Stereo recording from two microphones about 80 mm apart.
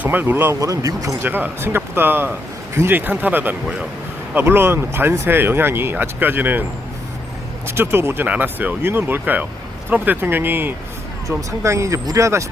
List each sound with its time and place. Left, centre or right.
0.0 s speech: right
0.6 s speech: right
1.2 s speech: right
7.8 s speech: right
11.3 s speech: right